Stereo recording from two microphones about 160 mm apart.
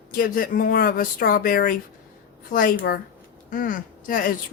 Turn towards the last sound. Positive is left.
turn(degrees=60)  # may be behind; listen again after turning